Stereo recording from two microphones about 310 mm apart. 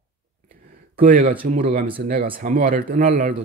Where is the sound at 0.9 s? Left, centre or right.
Right.